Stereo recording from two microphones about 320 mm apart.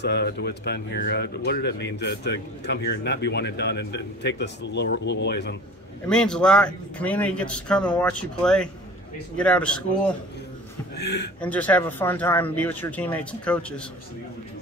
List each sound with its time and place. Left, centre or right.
0.0 s speech: left
6.0 s a man's voice: centre
11.0 s speech: left
11.4 s a man's voice: centre